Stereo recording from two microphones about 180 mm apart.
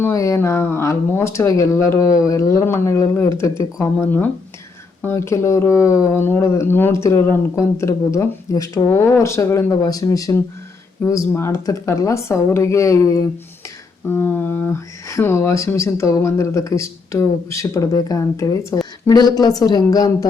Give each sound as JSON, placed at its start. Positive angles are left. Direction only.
{"t": 0.0, "sound": "speech", "side_deg": 15}